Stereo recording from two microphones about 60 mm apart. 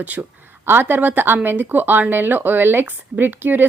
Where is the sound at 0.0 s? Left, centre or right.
Right.